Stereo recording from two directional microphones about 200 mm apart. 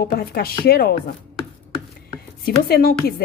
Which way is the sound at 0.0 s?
50° left (ahead or behind).